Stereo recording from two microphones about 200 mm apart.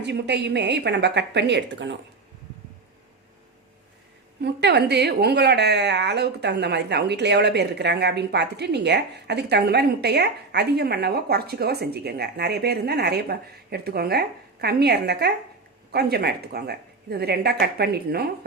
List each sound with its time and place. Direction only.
0.0 s a woman's voice: 60° right (ahead or behind)
4.4 s a woman's voice: 55° right (ahead or behind)